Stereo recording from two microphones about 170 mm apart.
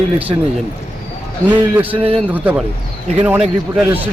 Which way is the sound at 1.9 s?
35° right (ahead or behind).